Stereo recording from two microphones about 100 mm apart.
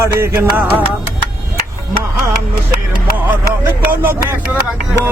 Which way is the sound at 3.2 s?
15° right (ahead or behind).